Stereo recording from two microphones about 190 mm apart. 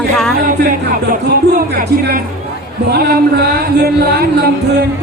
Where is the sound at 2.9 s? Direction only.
55° right (ahead or behind).